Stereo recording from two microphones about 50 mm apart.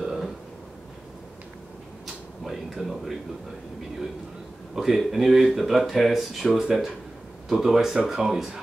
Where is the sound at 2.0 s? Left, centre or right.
Centre.